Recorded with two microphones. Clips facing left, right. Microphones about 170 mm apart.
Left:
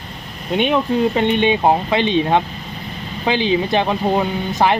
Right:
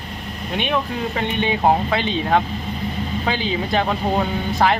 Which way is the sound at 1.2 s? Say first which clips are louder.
Left 6 dB; 30° left (ahead or behind).